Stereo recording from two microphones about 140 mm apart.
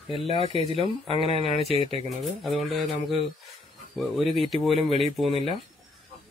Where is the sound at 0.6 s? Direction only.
45° right (ahead or behind).